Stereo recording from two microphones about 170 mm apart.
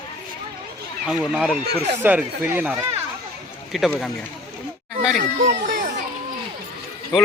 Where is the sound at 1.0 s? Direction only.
5° right (ahead or behind).